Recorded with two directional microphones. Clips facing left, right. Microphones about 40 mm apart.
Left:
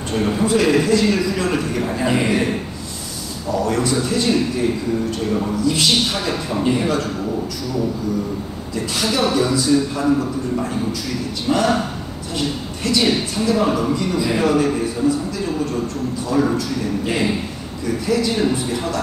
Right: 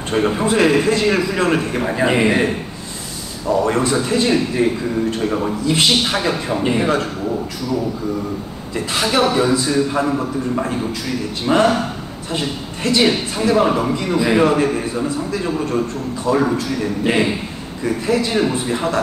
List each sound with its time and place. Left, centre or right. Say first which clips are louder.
0.1 s a man's voice: right 1 dB; right
3.4 s a man's voice: right 3 dB; right
8.7 s a man's voice: right 3 dB; right